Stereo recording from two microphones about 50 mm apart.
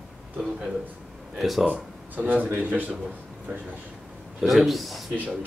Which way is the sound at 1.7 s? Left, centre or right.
Right.